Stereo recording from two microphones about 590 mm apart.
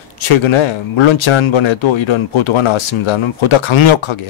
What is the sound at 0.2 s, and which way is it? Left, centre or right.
Speech, left.